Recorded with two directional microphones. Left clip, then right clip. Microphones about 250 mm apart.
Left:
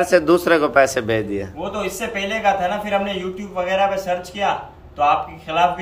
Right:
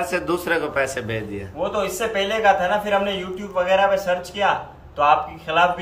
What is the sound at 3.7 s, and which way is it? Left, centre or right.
Speech, centre.